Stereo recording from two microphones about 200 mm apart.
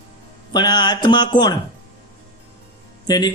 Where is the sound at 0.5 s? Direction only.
20° left (ahead or behind).